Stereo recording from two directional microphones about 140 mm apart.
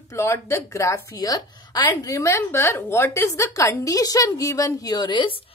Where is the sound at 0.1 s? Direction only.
20° left (ahead or behind).